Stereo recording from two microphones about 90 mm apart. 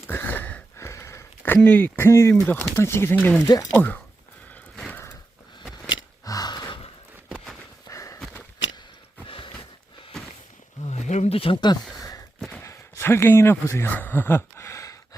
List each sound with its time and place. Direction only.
0.1 s a sound: 20° left (ahead or behind)
0.8 s a sound: 30° left (ahead or behind)
1.6 s speech: 15° left (ahead or behind)
2.0 s speech: 30° left (ahead or behind)
2.3 s speech: 15° left (ahead or behind)
2.7 s speech: 30° left (ahead or behind)
3.4 s speech: 40° left (ahead or behind)
3.8 s speech: 20° left (ahead or behind)
6.2 s gasp: 45° left (ahead or behind); by 6.9 s 70° left (ahead or behind)
7.9 s walk: 35° left (ahead or behind)
9.2 s a sound: 75° left (ahead or behind)
11.3 s speech: 90° left
12.6 s speech: 30° left (ahead or behind)